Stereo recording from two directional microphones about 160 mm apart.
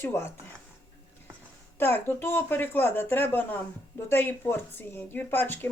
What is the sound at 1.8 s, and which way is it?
Speech, 15° left (ahead or behind).